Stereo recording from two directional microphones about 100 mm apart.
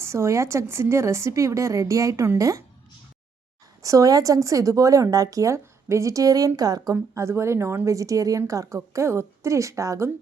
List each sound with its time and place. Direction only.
0.0 s a woman's voice: 30° right (ahead or behind)
3.8 s a woman's voice: 35° right (ahead or behind)
6.9 s a woman's voice: 30° right (ahead or behind)